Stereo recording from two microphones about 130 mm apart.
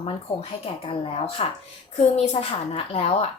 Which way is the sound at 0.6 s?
45° left (ahead or behind).